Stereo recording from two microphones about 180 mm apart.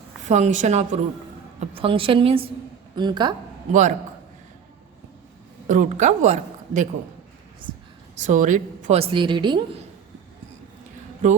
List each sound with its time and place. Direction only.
0.3 s a woman's voice: 40° right (ahead or behind); by 3.3 s 25° right (ahead or behind)
3.7 s a man's voice: 40° right (ahead or behind)
5.6 s speech: 45° right (ahead or behind)
8.1 s a woman's voice: 40° right (ahead or behind); by 9.8 s 25° right (ahead or behind)